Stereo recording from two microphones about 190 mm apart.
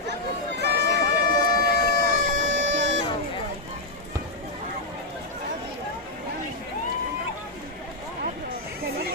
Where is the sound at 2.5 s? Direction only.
75° right (ahead or behind).